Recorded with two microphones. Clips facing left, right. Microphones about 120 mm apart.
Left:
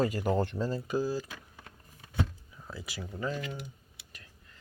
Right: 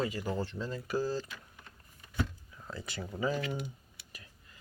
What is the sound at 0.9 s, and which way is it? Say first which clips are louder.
Speech: right 1 dB; 15° left (ahead or behind).